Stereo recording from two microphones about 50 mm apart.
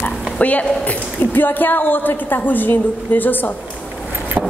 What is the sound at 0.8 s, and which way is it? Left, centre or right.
A woman's voice, left.